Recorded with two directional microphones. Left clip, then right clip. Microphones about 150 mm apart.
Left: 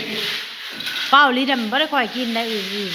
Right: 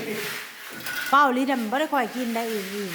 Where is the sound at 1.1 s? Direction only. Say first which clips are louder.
Left 5 dB; 20° right (ahead or behind).